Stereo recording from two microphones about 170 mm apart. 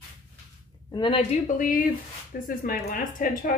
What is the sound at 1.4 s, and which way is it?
Speech, 50° left (ahead or behind).